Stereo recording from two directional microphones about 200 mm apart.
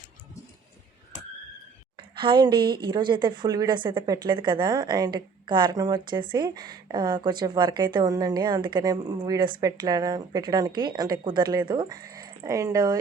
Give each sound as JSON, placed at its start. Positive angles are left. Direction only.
{"t": 2.0, "sound": "a woman's voice", "side_deg": -25}